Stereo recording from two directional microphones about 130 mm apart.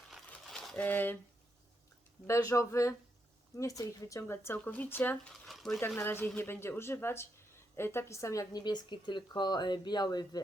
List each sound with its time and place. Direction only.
0.1 s crumpling: centre (ahead or behind)
2.2 s speech: 25° left (ahead or behind)
5.5 s a sound: centre (ahead or behind)
6.0 s a woman's voice: 15° left (ahead or behind); by 10.4 s 30° left (ahead or behind)